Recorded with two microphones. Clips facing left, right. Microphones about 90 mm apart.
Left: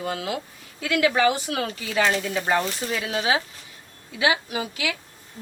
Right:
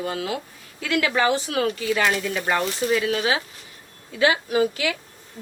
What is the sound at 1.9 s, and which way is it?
Speech, 35° left (ahead or behind).